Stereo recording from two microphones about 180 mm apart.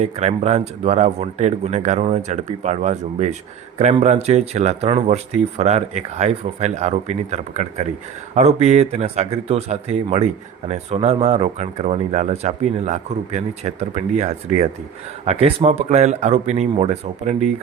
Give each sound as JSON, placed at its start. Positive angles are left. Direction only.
{"t": 0.0, "sound": "speech", "side_deg": -40}